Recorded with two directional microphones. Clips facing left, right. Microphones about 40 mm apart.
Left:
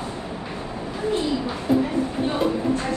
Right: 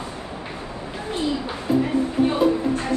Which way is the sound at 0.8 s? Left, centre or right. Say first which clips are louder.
Left 2 dB; right.